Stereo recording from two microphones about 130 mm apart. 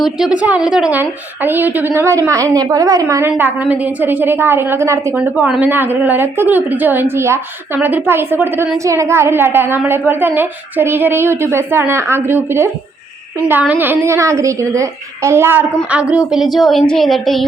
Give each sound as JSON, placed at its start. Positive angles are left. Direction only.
{"t": 0.0, "sound": "a woman's voice", "side_deg": -5}
{"t": 5.1, "sound": "a woman's voice", "side_deg": -10}